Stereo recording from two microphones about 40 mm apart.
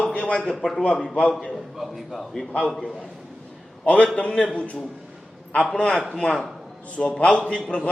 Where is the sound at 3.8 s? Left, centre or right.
Left.